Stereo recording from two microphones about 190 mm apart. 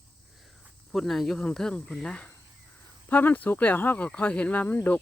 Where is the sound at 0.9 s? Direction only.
Centre (ahead or behind).